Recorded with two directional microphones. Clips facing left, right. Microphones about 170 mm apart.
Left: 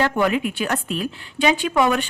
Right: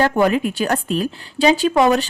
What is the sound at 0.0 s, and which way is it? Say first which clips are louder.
A woman's voice: right 4 dB; 40° right (ahead or behind).